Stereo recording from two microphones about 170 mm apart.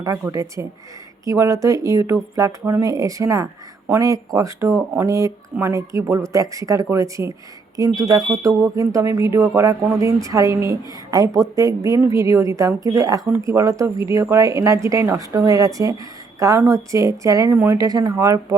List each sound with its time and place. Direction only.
0.0 s speech: 20° right (ahead or behind)